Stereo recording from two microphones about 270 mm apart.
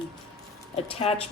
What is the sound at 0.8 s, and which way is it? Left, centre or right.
Speech, left.